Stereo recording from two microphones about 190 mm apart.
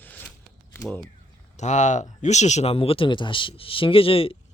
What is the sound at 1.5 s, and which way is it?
Speech, 40° left (ahead or behind).